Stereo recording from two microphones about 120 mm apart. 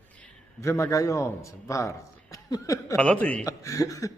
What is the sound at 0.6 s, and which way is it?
A man's voice, 25° left (ahead or behind).